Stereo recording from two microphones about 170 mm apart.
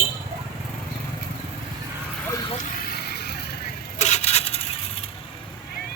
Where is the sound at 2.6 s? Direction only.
65° left (ahead or behind).